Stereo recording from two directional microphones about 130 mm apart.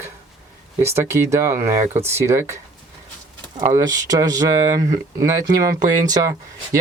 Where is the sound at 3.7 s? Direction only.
25° right (ahead or behind).